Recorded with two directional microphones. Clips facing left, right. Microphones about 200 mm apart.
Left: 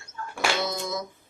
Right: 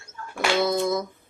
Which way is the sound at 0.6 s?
55° right (ahead or behind).